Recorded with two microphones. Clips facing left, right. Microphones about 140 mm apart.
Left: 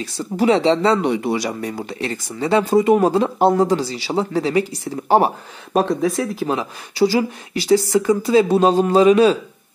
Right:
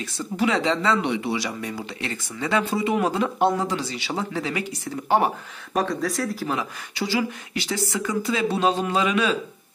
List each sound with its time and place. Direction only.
0.0 s speech: 35° left (ahead or behind)